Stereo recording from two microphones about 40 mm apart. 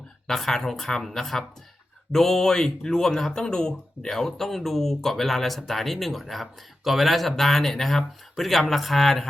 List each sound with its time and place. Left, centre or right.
0.3 s speech: centre
4.1 s speech: centre